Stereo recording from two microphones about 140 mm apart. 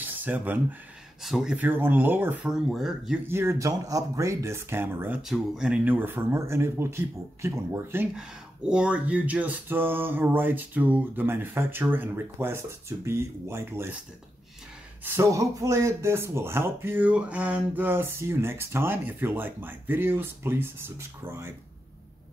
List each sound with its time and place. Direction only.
0.0 s speech: 10° right (ahead or behind)
3.3 s speech: 15° right (ahead or behind)
5.2 s speech: 5° right (ahead or behind)
8.1 s speech: 5° right (ahead or behind)
15.0 s speech: 20° right (ahead or behind)